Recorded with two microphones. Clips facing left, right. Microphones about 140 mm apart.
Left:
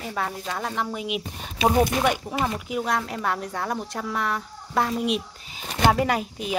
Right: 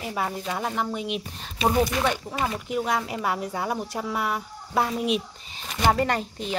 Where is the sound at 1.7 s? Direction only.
25° left (ahead or behind).